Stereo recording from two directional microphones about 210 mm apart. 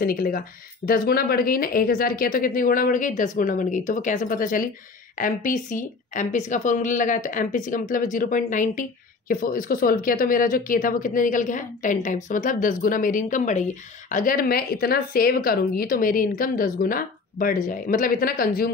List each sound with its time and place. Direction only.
0.0 s speech: 45° left (ahead or behind)